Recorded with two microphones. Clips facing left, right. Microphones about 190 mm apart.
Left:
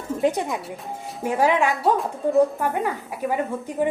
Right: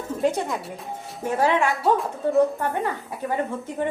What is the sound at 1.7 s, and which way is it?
Speech, centre (ahead or behind).